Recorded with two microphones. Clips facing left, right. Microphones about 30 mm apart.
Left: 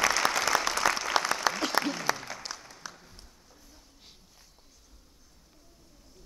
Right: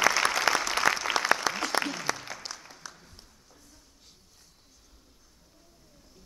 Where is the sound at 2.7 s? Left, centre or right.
Centre.